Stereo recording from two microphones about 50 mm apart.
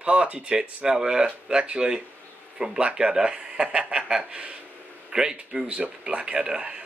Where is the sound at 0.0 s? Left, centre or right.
Right.